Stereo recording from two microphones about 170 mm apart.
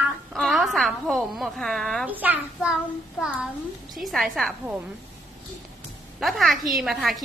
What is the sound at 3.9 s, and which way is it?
Speech, centre (ahead or behind).